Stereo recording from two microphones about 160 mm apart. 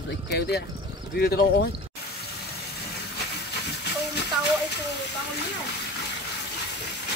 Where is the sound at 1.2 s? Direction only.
80° left.